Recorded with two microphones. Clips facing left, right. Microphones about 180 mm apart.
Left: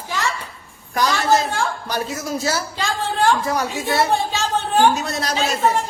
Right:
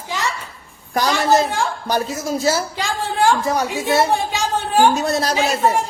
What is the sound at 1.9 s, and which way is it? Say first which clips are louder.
Speech: right 3 dB; 30° right (ahead or behind).